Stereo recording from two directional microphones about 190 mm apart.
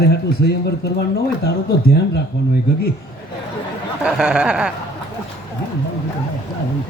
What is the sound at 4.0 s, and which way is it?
Speech, 5° right (ahead or behind).